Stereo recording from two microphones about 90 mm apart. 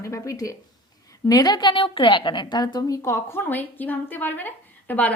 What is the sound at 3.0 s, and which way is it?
Speech, 35° left (ahead or behind).